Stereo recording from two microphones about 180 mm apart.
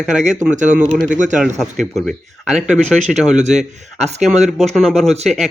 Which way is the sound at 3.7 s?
40° right (ahead or behind).